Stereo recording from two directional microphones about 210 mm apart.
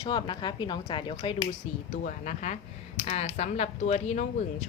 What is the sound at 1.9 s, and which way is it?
Speech, 35° left (ahead or behind).